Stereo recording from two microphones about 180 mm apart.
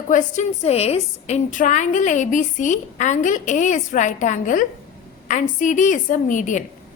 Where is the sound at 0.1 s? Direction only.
40° left (ahead or behind).